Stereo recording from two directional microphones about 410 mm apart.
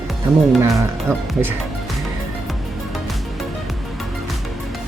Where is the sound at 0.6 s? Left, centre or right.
Centre.